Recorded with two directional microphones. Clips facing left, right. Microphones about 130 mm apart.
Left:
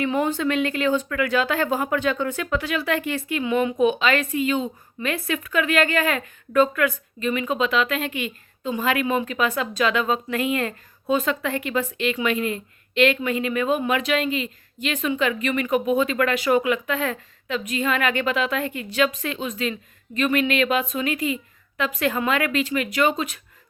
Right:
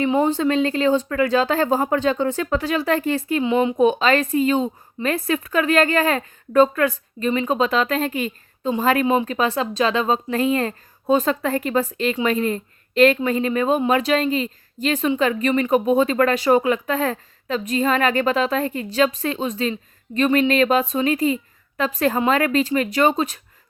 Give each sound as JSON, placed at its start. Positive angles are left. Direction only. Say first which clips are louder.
{"t": 0.0, "sound": "speech", "louder": "right 4 dB", "side_deg": -20}
{"t": 0.3, "sound": "a woman's voice", "louder": "right 4 dB", "side_deg": -35}
{"t": 3.4, "sound": "a woman's voice", "louder": "right 2 dB", "side_deg": -25}